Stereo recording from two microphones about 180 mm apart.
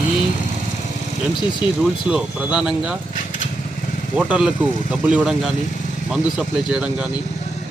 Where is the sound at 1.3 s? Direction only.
25° left (ahead or behind).